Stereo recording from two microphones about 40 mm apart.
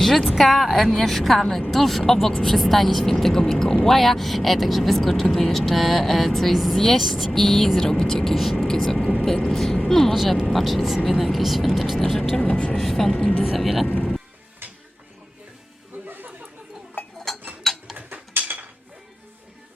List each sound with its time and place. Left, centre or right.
0.0 s speech: centre
12.4 s speech: left
12.7 s speech: centre
13.6 s speech: centre
13.8 s speech: left
14.6 s a sound: right
16.0 s a sound: right
17.3 s tick-tock: centre
17.9 s a sound: right